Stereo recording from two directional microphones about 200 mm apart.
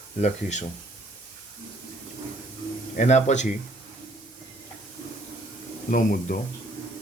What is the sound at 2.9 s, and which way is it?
Speech, 35° left (ahead or behind).